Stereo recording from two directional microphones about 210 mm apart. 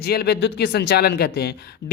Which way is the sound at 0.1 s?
50° left (ahead or behind).